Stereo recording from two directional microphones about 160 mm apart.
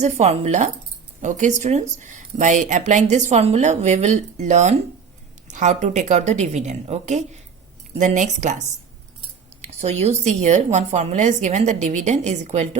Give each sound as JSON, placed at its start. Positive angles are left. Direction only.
{"t": 0.0, "sound": "speech", "side_deg": -45}